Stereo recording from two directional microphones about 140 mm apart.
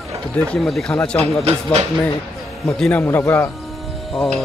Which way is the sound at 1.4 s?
50° right (ahead or behind).